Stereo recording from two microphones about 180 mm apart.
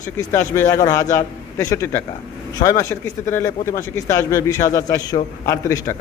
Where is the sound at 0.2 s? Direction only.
15° left (ahead or behind).